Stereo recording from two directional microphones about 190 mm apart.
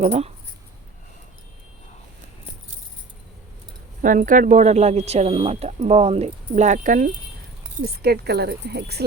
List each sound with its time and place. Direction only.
0.0 s speech: 35° right (ahead or behind)
4.0 s speech: 45° right (ahead or behind)
7.9 s speech: 55° right (ahead or behind)